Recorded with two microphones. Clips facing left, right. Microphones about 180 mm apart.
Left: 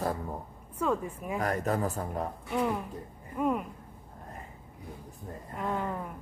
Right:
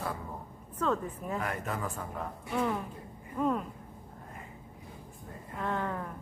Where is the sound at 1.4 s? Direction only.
40° left (ahead or behind).